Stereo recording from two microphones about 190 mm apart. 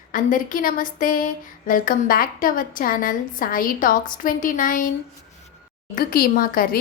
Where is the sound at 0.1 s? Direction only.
45° left (ahead or behind).